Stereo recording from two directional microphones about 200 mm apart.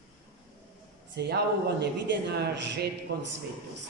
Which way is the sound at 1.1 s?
55° right (ahead or behind).